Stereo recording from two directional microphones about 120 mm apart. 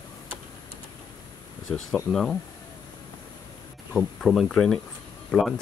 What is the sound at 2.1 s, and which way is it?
Speech, 5° left (ahead or behind).